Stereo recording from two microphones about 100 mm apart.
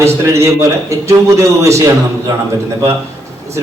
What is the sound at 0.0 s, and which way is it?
A man's voice, 30° right (ahead or behind).